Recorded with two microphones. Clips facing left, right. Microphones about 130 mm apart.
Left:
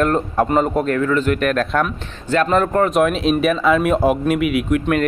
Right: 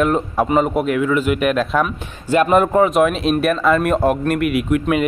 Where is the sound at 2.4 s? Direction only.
15° right (ahead or behind).